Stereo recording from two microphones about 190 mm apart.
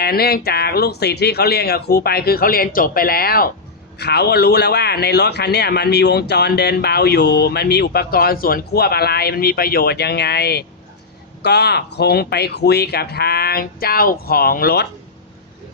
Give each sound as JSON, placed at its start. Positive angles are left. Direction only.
{"t": 0.0, "sound": "a man's voice", "side_deg": 55}